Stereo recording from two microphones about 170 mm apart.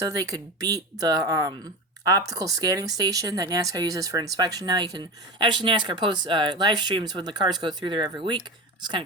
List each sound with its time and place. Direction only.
0.1 s speech: 20° right (ahead or behind)